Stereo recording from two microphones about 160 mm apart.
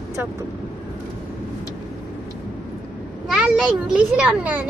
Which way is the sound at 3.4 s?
5° right (ahead or behind).